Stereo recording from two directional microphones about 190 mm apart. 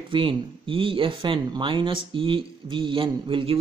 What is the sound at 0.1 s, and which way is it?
A man's voice, 25° right (ahead or behind).